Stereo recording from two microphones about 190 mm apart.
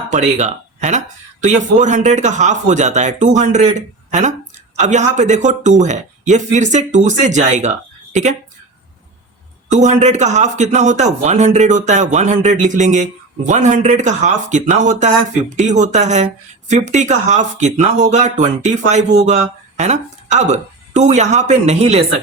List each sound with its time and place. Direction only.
0.1 s speech: 40° right (ahead or behind)
9.6 s speech: 40° right (ahead or behind)